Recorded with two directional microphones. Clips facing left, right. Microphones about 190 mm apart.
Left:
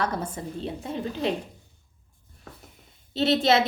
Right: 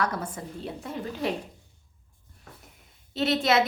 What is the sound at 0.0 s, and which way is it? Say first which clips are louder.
A woman's voice: left 1 dB; 25° left (ahead or behind).